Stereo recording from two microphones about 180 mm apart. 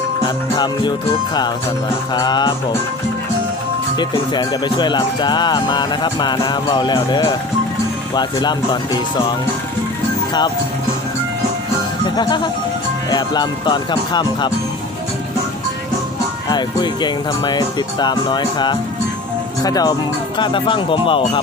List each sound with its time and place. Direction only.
0.5 s speech: 25° left (ahead or behind)
2.1 s speech: 25° left (ahead or behind)
3.9 s speech: 25° left (ahead or behind)
12.0 s speech: 25° left (ahead or behind)
16.5 s speech: 25° left (ahead or behind)